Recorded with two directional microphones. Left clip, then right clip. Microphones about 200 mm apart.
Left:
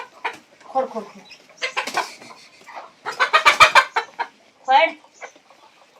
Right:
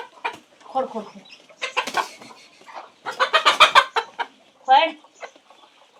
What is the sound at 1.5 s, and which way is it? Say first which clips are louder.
Chicken: even; 20° right (ahead or behind).